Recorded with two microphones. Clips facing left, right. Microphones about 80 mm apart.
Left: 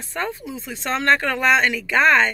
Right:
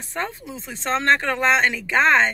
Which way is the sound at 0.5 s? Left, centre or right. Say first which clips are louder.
Right 1 dB; right.